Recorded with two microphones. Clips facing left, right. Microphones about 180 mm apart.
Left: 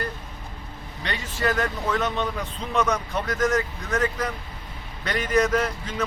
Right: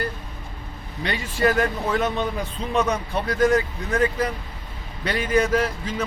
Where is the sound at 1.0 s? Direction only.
10° right (ahead or behind).